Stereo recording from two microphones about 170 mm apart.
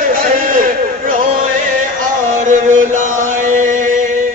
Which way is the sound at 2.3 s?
45° right (ahead or behind).